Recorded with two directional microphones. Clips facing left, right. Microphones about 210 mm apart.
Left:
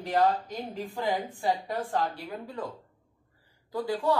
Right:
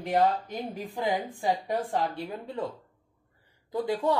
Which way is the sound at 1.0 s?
15° right (ahead or behind).